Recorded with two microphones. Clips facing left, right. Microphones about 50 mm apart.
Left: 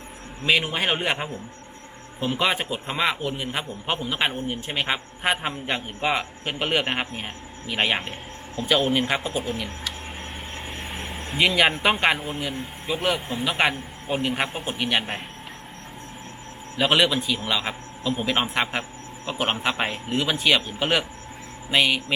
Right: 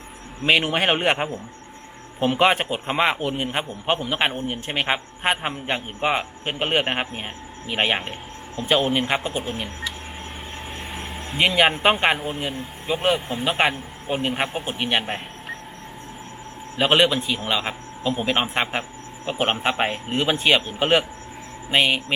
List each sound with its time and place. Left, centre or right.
0.4 s a man's voice: right
5.4 s a man's voice: centre
10.9 s vehicle: centre
11.3 s a man's voice: centre
16.7 s a man's voice: right